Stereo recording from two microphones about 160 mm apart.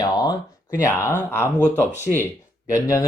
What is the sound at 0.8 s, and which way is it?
Speech, 15° left (ahead or behind).